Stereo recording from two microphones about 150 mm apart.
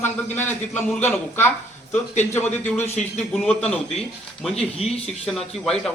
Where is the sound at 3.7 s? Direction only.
Centre (ahead or behind).